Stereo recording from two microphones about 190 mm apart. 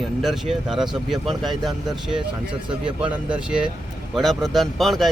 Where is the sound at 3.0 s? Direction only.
5° right (ahead or behind).